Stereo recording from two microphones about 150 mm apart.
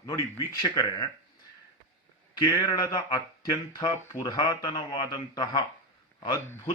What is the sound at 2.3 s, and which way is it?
Speech, 25° left (ahead or behind).